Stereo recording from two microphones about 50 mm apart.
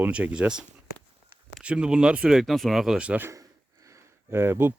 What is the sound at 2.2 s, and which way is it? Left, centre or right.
Speech, centre.